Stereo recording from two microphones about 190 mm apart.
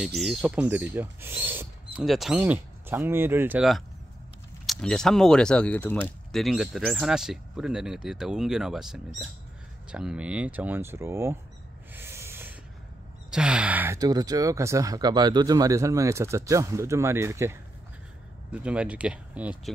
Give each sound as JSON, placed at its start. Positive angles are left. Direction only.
{"t": 0.0, "sound": "speech", "side_deg": 0}
{"t": 11.9, "sound": "a sound", "side_deg": -10}
{"t": 13.3, "sound": "speech", "side_deg": -5}